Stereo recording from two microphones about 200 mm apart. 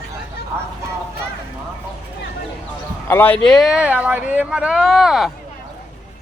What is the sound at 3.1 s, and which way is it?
Speech, 10° left (ahead or behind).